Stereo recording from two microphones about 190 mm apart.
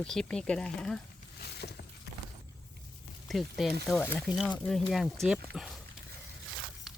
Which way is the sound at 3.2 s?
Centre (ahead or behind).